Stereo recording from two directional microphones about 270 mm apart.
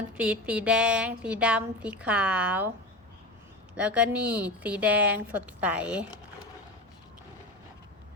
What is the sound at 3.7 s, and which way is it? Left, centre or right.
A woman's voice, centre.